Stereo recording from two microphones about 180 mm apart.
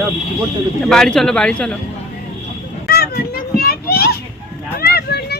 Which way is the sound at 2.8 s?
60° left (ahead or behind).